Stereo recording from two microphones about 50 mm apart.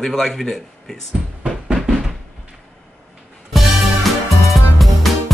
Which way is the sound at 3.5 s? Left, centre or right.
Centre.